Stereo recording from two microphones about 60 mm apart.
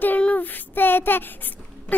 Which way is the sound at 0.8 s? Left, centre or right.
Left.